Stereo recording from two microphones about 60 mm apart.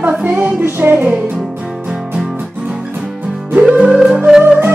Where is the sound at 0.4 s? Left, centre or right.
Right.